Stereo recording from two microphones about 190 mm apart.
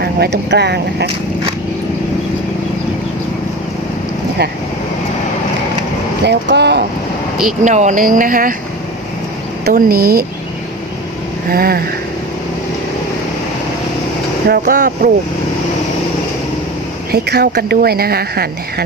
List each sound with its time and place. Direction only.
0.0 s speech: 60° right (ahead or behind)
6.2 s speech: 65° right (ahead or behind)
7.6 s speech: 40° right (ahead or behind)
9.6 s speech: 50° right (ahead or behind)
11.5 s speech: 50° right (ahead or behind)
14.6 s speech: 45° right (ahead or behind)
17.1 s speech: 55° right (ahead or behind)